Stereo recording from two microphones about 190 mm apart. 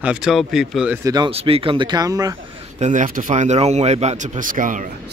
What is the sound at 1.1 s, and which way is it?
Speech, 30° right (ahead or behind).